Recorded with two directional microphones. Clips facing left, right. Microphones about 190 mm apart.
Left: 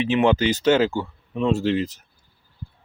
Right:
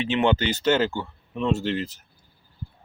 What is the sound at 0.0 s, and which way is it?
Speech, 10° left (ahead or behind).